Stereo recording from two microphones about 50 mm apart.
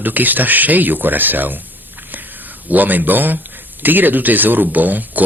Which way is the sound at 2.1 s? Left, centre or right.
Right.